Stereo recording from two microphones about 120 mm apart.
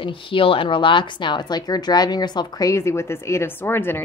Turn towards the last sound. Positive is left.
turn(degrees=20)  # may be behind; listen again after turning